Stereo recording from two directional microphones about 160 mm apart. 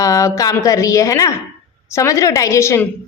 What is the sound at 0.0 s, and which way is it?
A woman's voice, 20° left (ahead or behind).